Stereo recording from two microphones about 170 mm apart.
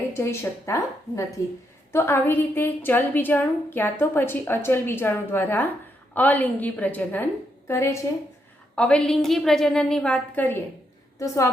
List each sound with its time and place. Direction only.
0.1 s a woman's voice: 15° left (ahead or behind)
8.7 s a woman's voice: 5° left (ahead or behind)